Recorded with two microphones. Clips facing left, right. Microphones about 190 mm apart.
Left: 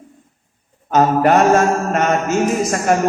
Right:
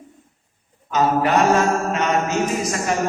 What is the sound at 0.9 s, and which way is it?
A man's voice, 50° left (ahead or behind).